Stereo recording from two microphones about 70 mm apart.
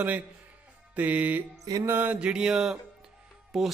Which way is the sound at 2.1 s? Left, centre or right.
Centre.